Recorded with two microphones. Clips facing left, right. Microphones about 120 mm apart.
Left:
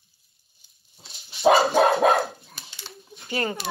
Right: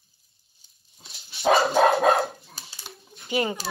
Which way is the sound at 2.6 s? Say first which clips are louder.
Left 1 dB; 40° right (ahead or behind).